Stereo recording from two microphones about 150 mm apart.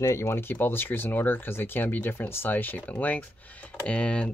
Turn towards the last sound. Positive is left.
turn(degrees=5)  # may be behind; listen again after turning